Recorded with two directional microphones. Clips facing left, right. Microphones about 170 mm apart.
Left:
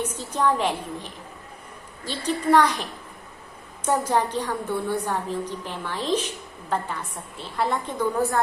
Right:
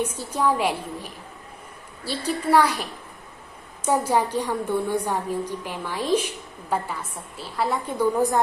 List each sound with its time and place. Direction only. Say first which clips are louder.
0.0 s a woman's voice: right 1 dB; 10° right (ahead or behind)
3.8 s a woman's voice: right 1 dB; 10° right (ahead or behind)